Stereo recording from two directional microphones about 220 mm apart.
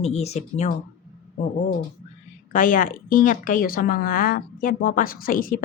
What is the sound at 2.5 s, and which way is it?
A woman's voice, 35° left (ahead or behind).